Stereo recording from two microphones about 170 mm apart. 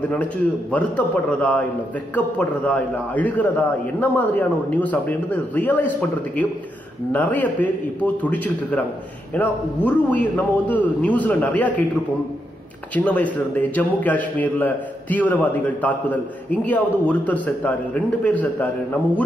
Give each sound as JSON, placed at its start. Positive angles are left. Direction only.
{"t": 0.1, "sound": "a man's voice", "side_deg": 10}
{"t": 12.9, "sound": "a man's voice", "side_deg": 10}